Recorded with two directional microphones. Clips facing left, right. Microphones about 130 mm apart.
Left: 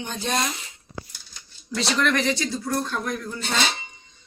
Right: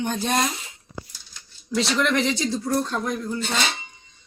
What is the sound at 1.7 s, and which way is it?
Speech, 15° right (ahead or behind).